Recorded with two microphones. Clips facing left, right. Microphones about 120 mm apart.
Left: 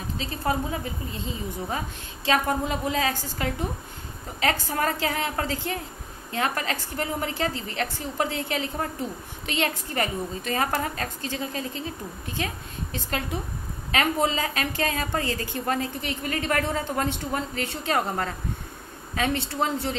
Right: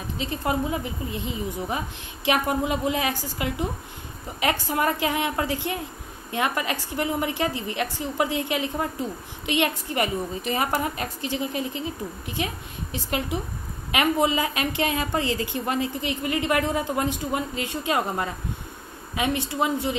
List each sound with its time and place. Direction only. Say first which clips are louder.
0.2 s a woman's voice: right 2 dB; 20° right (ahead or behind)